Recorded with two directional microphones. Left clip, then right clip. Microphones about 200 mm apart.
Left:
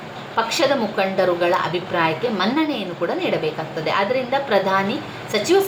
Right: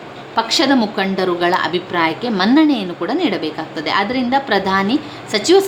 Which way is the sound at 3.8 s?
45° right (ahead or behind).